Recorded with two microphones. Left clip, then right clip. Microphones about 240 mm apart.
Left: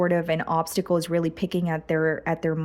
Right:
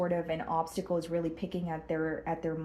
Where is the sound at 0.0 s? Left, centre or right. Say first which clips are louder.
Left 8 dB; left.